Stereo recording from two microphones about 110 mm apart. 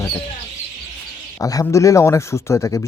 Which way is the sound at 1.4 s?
30° left (ahead or behind).